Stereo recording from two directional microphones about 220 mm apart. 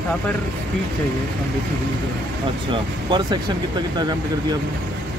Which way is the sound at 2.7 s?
20° right (ahead or behind).